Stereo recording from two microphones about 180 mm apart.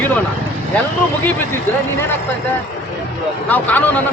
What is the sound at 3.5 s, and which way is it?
Speech, 10° left (ahead or behind).